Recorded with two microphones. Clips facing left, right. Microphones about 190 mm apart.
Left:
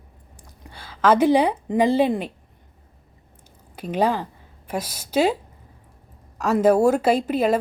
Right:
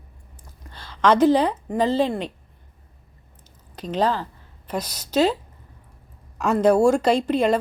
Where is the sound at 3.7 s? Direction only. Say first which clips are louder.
Left 1 dB; 10° left (ahead or behind).